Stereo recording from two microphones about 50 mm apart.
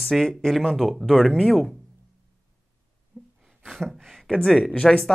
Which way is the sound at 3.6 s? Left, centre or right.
Centre.